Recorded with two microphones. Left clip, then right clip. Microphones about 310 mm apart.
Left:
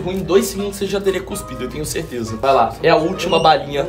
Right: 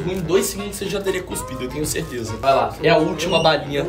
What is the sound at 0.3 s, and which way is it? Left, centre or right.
Speech, centre.